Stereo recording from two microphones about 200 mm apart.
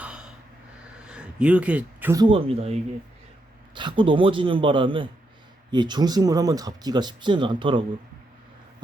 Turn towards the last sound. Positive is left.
turn(degrees=-25)  # may be behind; listen again after turning